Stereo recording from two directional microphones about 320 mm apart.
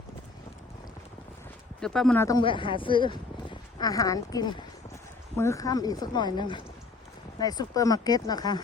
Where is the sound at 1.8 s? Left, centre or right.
Centre.